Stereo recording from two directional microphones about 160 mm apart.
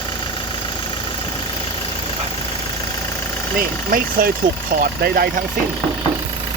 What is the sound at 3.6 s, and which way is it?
Speech, 65° right (ahead or behind).